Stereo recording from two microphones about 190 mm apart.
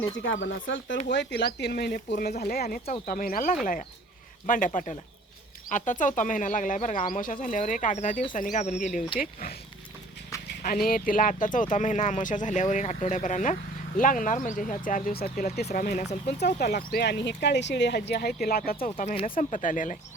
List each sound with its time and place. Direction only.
0.4 s speech: 80° left
1.0 s speech: 65° left (ahead or behind); by 9.5 s 50° left (ahead or behind)
10.6 s speech: 45° left (ahead or behind)
19.4 s speech: 40° left (ahead or behind)